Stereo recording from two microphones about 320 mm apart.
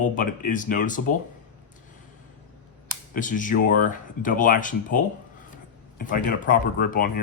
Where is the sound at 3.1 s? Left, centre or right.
Left.